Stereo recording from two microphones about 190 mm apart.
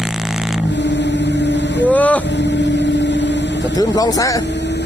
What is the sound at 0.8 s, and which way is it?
Vehicle, 65° left (ahead or behind).